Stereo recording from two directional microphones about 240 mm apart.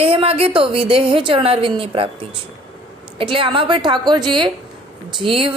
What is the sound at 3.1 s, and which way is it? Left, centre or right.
A woman's voice, right.